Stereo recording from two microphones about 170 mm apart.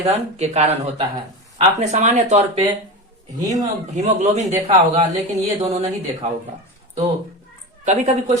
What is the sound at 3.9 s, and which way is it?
A woman's voice, 45° right (ahead or behind).